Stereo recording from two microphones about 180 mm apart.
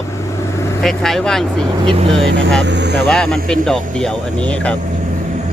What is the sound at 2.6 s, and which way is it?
Speech, 75° right (ahead or behind).